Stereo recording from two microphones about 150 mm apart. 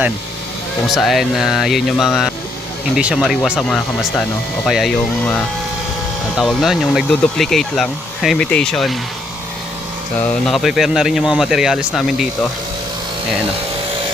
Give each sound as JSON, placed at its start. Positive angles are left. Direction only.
{"t": 0.9, "sound": "speech", "side_deg": 0}
{"t": 6.3, "sound": "speech", "side_deg": 0}
{"t": 10.4, "sound": "speech", "side_deg": 0}